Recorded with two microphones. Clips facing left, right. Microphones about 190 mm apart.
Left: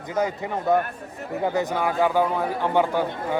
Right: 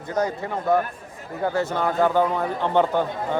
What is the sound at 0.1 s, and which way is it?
A man's voice, 20° left (ahead or behind).